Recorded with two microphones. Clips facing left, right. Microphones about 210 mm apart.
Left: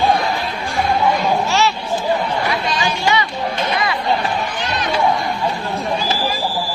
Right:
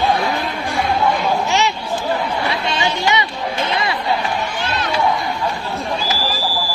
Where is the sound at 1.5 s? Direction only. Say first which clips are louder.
Left 1 dB; 20° right (ahead or behind).